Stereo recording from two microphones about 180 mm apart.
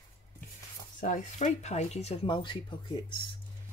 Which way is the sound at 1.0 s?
40° left (ahead or behind).